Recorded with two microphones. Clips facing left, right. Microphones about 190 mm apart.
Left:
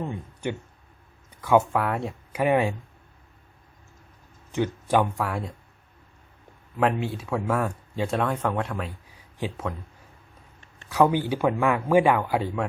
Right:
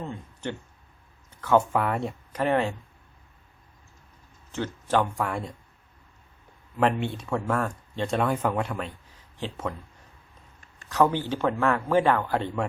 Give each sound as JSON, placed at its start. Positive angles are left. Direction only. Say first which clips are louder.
{"t": 0.0, "sound": "a sound", "louder": "left 3 dB", "side_deg": 15}
{"t": 1.7, "sound": "speech", "louder": "even", "side_deg": 0}
{"t": 2.4, "sound": "a man's voice", "louder": "left 2 dB", "side_deg": 15}
{"t": 4.5, "sound": "speech", "louder": "left 3 dB", "side_deg": 15}
{"t": 5.1, "sound": "speech", "louder": "even", "side_deg": 0}
{"t": 6.7, "sound": "speech", "louder": "even", "side_deg": 5}
{"t": 9.4, "sound": "a man's voice", "louder": "left 3 dB", "side_deg": 10}
{"t": 10.8, "sound": "a man's voice", "louder": "left 2 dB", "side_deg": 10}